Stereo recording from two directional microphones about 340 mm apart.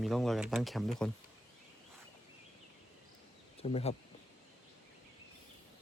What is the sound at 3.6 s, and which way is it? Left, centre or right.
Speech, centre.